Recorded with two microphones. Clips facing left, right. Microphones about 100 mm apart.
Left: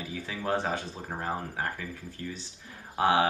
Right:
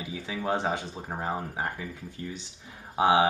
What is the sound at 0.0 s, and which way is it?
Speech, 15° right (ahead or behind).